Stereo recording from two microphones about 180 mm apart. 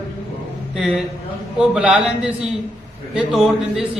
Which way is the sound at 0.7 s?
Centre (ahead or behind).